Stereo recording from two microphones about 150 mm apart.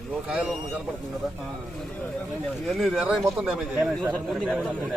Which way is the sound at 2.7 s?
Centre (ahead or behind).